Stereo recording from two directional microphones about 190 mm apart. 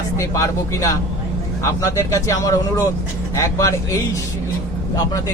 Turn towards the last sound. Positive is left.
turn(degrees=15)  # may be behind; listen again after turning